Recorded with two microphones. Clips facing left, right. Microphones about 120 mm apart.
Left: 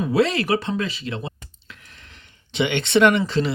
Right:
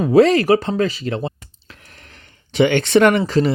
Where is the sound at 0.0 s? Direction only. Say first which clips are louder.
Right 7 dB; 40° right (ahead or behind).